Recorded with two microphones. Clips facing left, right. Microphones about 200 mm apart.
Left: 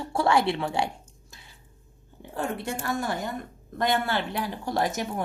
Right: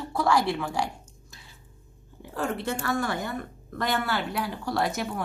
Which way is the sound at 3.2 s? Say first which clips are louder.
Even; 20° left (ahead or behind).